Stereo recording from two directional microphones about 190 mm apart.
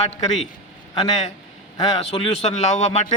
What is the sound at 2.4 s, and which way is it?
Speech, 35° left (ahead or behind).